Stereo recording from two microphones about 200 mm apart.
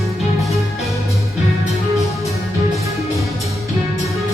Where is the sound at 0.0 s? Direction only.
Centre (ahead or behind).